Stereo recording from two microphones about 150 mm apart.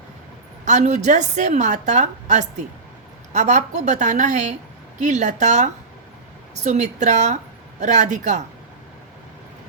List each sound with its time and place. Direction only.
0.6 s a woman's voice: 50° right (ahead or behind)